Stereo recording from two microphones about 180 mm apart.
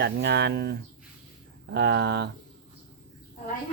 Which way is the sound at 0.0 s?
70° right (ahead or behind).